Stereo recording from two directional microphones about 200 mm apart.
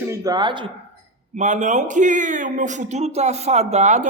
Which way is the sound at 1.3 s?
35° right (ahead or behind).